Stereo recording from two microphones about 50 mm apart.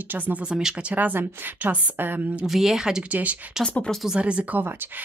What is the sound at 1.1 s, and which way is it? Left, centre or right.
Speech, right.